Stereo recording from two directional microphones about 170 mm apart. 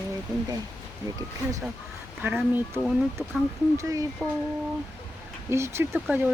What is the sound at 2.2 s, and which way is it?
Speech, 10° right (ahead or behind).